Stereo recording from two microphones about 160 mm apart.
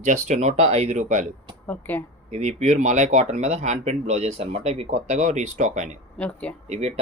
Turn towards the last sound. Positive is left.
turn(degrees=-40)  # may be behind; listen again after turning